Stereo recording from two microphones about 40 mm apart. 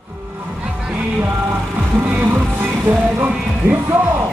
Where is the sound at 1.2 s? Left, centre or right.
Right.